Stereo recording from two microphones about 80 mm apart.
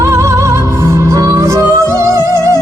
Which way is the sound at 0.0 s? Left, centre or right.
Right.